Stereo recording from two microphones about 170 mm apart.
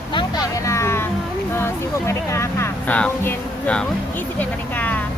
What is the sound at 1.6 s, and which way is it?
Speech, 15° left (ahead or behind).